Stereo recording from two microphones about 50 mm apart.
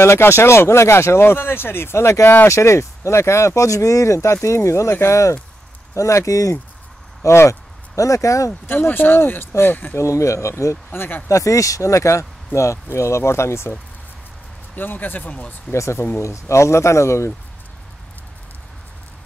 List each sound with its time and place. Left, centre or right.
0.0 s speech: left
8.6 s speech: left
9.9 s speech: left
10.9 s speech: left
11.2 s speech: left
12.5 s speech: left
12.9 s speech: left
14.8 s speech: left
15.7 s speech: left
16.2 s speech: left